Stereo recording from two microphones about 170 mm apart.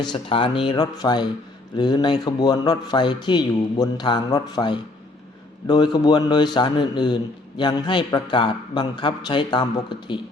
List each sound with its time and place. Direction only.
0.0 s a man's voice: 30° left (ahead or behind)